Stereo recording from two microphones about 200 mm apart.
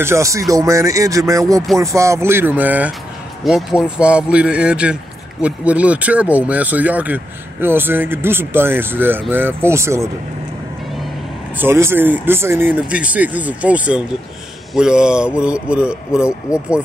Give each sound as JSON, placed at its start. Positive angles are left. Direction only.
{"t": 0.0, "sound": "speech", "side_deg": -15}
{"t": 11.5, "sound": "speech", "side_deg": -10}